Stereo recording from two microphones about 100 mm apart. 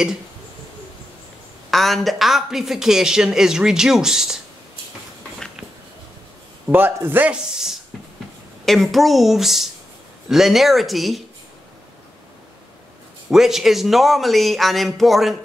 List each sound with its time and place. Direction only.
1.7 s speech: centre (ahead or behind)
6.7 s a man's voice: 20° right (ahead or behind)
8.6 s speech: centre (ahead or behind)
13.3 s speech: 5° right (ahead or behind)